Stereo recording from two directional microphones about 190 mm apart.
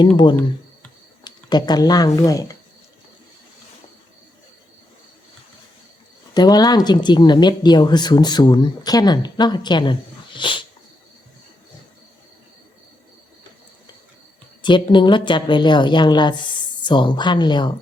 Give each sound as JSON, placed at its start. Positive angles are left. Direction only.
{"t": 1.2, "sound": "speech", "side_deg": 20}
{"t": 6.3, "sound": "speech", "side_deg": 20}
{"t": 14.6, "sound": "speech", "side_deg": 25}